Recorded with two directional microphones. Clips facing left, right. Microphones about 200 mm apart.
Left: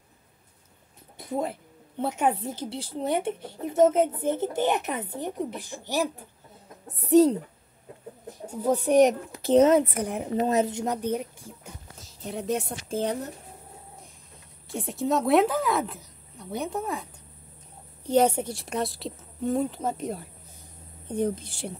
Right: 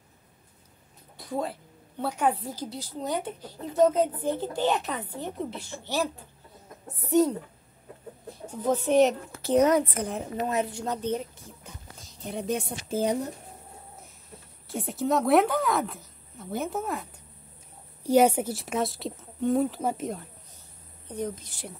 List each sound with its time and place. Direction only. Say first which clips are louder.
1.1 s a woman's voice: left 2 dB; 20° left (ahead or behind)
7.0 s speech: left 4 dB; 35° left (ahead or behind)
8.5 s a child's voice: left 1 dB; 10° left (ahead or behind)
9.5 s a woman's voice: left 3 dB; 25° left (ahead or behind)
9.9 s a child's voice: left 3 dB; 15° left (ahead or behind)
10.4 s speech: left 4 dB; 40° left (ahead or behind)
10.7 s a woman's voice: left 2 dB; 15° left (ahead or behind)
12.2 s a woman's voice: left 1 dB; centre (ahead or behind)
14.7 s a woman's voice: even; centre (ahead or behind)
21.1 s a woman's voice: left 6 dB; 30° left (ahead or behind)